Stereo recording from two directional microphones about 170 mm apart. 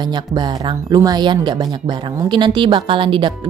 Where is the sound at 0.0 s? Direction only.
25° right (ahead or behind).